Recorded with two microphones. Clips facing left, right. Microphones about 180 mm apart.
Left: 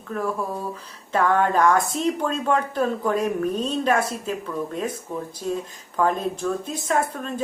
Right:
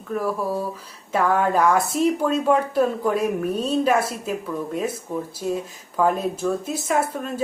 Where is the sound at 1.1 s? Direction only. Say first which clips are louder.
Even; 5° right (ahead or behind).